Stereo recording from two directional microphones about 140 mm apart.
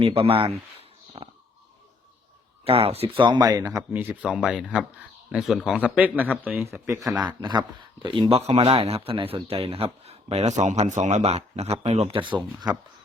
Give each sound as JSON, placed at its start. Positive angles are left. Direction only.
{"t": 0.0, "sound": "speech", "side_deg": -40}
{"t": 1.2, "sound": "a sound", "side_deg": -35}
{"t": 2.6, "sound": "speech", "side_deg": -45}
{"t": 3.9, "sound": "speech", "side_deg": -10}
{"t": 8.0, "sound": "speech", "side_deg": -35}